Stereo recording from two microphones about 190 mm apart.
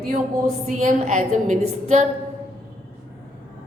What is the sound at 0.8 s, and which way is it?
Speech, 40° right (ahead or behind).